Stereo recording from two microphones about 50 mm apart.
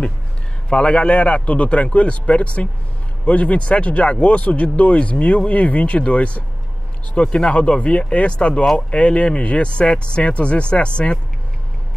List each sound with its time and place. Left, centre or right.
0.7 s speech: left